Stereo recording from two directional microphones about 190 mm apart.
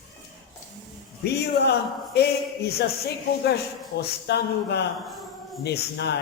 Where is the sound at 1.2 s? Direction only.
60° left (ahead or behind).